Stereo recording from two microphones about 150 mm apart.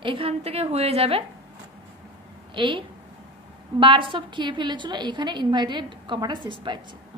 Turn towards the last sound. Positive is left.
turn(degrees=-30)  # may be behind; listen again after turning